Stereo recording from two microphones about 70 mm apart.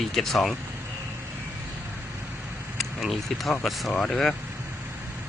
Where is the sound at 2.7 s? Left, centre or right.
Centre.